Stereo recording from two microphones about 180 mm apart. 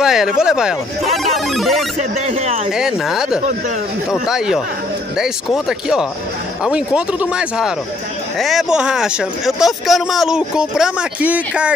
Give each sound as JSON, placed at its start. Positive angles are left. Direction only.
{"t": 0.0, "sound": "speech", "side_deg": -5}
{"t": 2.0, "sound": "speech", "side_deg": -40}
{"t": 2.7, "sound": "speech", "side_deg": -5}
{"t": 5.7, "sound": "speech", "side_deg": -5}